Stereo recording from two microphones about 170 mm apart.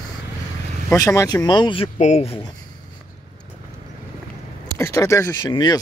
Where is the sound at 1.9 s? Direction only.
40° left (ahead or behind).